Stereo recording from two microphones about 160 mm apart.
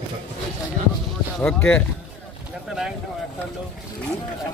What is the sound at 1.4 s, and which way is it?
Speech, 5° left (ahead or behind).